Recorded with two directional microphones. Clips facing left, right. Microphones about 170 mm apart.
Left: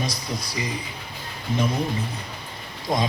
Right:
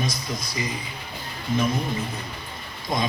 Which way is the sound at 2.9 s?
35° left (ahead or behind).